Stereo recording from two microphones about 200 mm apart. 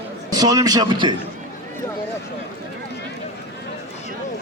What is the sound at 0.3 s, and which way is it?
Speech, 20° right (ahead or behind).